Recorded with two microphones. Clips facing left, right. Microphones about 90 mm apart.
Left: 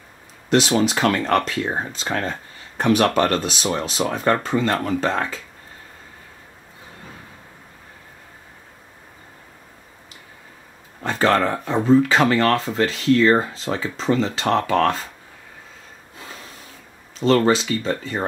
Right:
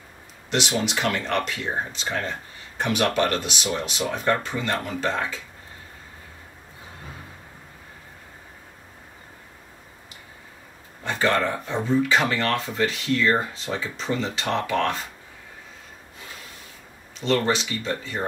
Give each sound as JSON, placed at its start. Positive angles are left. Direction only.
{"t": 0.5, "sound": "speech", "side_deg": 40}
{"t": 2.8, "sound": "speech", "side_deg": 40}
{"t": 11.1, "sound": "speech", "side_deg": 35}
{"t": 17.2, "sound": "speech", "side_deg": 35}